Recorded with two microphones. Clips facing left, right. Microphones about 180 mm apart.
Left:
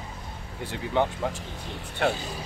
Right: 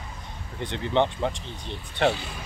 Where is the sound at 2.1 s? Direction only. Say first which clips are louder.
Right 1 dB; 40° left (ahead or behind).